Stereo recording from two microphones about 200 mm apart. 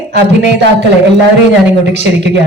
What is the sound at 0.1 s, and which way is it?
Speech, 55° right (ahead or behind).